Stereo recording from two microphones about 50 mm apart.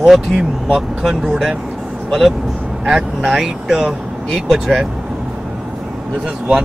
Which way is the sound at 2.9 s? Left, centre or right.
Centre.